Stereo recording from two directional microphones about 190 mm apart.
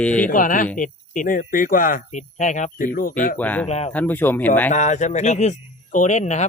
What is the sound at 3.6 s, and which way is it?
Speech, 35° left (ahead or behind).